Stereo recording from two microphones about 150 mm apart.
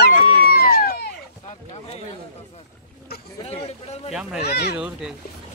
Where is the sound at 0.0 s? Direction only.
90° left.